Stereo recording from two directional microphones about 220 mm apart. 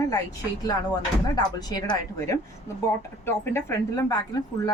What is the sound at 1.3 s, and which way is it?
Speech, 20° left (ahead or behind).